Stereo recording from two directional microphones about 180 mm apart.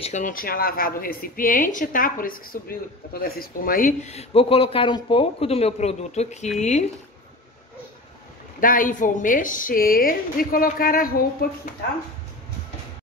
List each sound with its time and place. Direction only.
0.0 s a woman's voice: 45° left (ahead or behind)
8.5 s a woman's voice: 50° left (ahead or behind)